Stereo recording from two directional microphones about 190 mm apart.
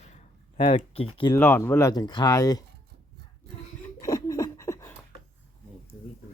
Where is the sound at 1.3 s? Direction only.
10° left (ahead or behind).